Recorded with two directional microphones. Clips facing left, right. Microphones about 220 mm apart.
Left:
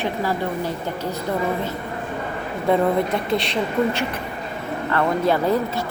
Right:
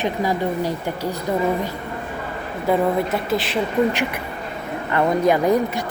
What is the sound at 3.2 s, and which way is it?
Speech, 5° right (ahead or behind).